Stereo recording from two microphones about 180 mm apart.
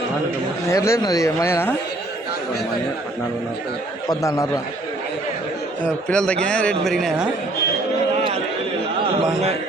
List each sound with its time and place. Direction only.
0.7 s speech: 15° left (ahead or behind)
4.1 s speech: 20° left (ahead or behind)
6.1 s a man's voice: 5° left (ahead or behind)